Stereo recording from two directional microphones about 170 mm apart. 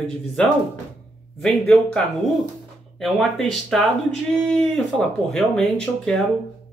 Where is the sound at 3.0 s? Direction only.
Centre (ahead or behind).